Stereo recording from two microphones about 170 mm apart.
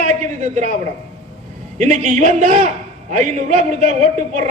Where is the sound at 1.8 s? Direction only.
45° right (ahead or behind).